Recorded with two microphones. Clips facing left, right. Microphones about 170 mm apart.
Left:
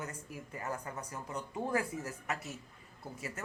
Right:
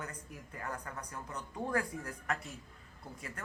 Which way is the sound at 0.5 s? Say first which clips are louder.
Left 2 dB; 25° left (ahead or behind).